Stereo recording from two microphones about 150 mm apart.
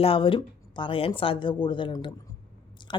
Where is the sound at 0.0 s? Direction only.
35° left (ahead or behind).